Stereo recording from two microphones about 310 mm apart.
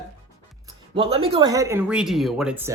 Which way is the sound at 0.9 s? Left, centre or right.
Centre.